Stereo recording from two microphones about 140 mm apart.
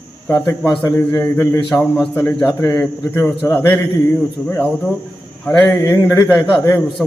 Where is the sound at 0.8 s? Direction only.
20° left (ahead or behind).